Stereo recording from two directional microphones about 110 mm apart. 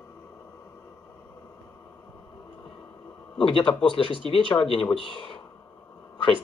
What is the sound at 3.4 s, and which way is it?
A man's voice, 50° left (ahead or behind).